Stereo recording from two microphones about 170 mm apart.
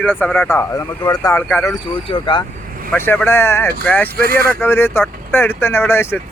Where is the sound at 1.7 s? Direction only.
30° left (ahead or behind).